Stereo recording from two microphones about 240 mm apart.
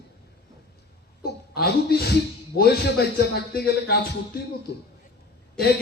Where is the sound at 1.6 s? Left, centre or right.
Left.